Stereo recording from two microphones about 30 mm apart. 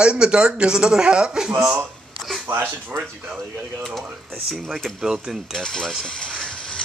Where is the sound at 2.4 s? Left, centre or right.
Right.